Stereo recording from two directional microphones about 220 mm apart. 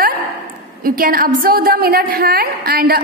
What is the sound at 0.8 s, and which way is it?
A woman's voice, 40° right (ahead or behind).